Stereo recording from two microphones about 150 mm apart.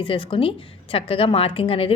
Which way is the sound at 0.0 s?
35° left (ahead or behind).